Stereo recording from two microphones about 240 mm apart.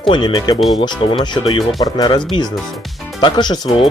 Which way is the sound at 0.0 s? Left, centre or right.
Centre.